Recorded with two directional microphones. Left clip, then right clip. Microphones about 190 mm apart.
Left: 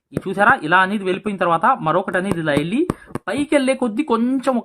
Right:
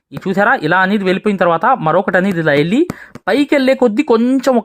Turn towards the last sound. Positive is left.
turn(degrees=-30)  # may be behind; listen again after turning